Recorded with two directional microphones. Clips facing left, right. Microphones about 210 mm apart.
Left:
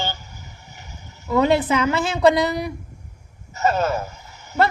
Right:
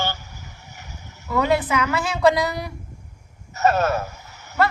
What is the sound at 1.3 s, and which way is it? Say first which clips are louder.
A woman's voice: left 3 dB; 25° left (ahead or behind).